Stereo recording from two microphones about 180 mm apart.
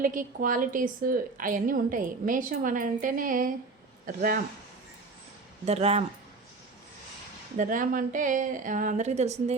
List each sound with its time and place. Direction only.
0.0 s a woman's voice: 50° right (ahead or behind)
5.6 s speech: 35° right (ahead or behind)
7.5 s a woman's voice: 45° right (ahead or behind)